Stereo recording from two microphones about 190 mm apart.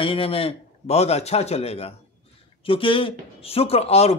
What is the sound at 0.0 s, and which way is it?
Speech, 30° left (ahead or behind).